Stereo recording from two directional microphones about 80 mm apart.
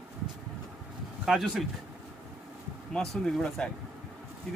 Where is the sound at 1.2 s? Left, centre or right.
Centre.